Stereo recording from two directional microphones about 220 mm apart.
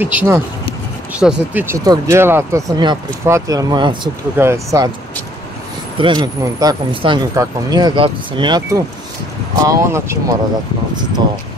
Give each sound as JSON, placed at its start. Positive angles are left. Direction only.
{"t": 0.0, "sound": "speech", "side_deg": -10}
{"t": 5.9, "sound": "speech", "side_deg": -20}